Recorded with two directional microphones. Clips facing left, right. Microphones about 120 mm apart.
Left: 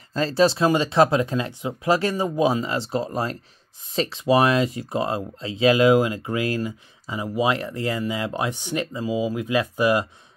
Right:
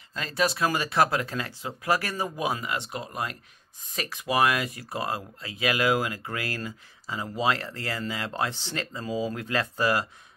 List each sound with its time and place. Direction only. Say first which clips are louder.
0.1 s speech: left 8 dB; 30° left (ahead or behind); by 10.0 s 15° left (ahead or behind)